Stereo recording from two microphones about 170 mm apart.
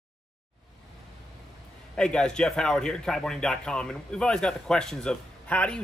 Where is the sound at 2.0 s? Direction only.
5° left (ahead or behind).